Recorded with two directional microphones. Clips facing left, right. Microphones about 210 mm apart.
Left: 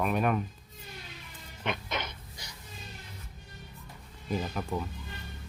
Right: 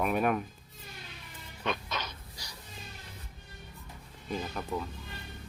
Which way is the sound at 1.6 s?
20° left (ahead or behind).